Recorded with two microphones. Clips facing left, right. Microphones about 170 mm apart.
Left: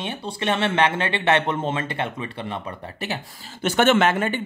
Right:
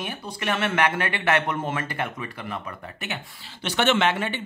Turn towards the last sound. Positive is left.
turn(degrees=45)  # may be behind; listen again after turning